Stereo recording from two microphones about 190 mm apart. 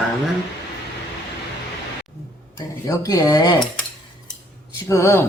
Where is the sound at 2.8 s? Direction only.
20° left (ahead or behind).